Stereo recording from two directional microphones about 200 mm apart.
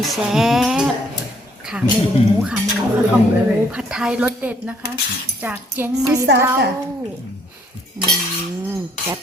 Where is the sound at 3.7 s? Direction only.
5° right (ahead or behind).